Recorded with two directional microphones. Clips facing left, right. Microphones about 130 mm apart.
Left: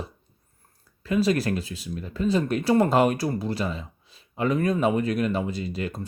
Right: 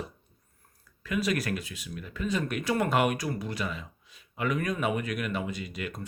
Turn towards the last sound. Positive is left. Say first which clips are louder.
# left 6 dB
turn(degrees=30)  # may be behind; listen again after turning